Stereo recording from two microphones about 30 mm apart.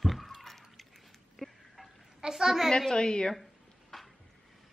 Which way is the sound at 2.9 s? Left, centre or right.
Left.